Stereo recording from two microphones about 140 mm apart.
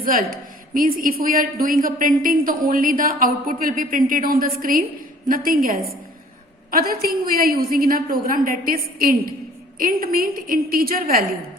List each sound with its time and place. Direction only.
0.0 s a woman's voice: 90° right